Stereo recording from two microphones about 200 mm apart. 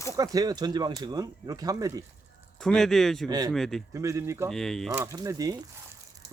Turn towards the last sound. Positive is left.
turn(degrees=-20)  # may be behind; listen again after turning